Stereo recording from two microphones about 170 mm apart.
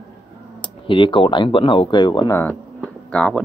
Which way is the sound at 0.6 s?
30° left (ahead or behind).